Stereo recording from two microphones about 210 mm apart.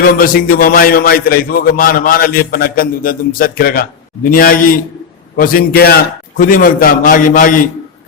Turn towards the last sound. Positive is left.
turn(degrees=40)  # may be behind; listen again after turning